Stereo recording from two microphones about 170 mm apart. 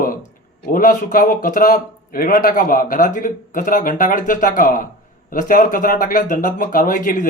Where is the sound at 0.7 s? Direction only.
55° left (ahead or behind).